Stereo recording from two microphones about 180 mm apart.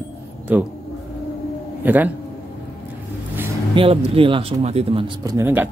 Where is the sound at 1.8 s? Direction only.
10° right (ahead or behind).